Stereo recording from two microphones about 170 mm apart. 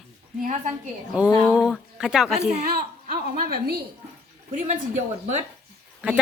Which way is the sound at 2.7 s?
55° right (ahead or behind).